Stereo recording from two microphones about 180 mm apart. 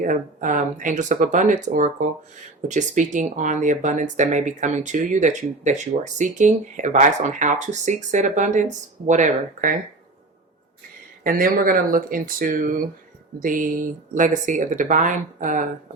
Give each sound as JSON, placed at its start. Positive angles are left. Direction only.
{"t": 0.0, "sound": "speech", "side_deg": -45}
{"t": 11.2, "sound": "speech", "side_deg": -50}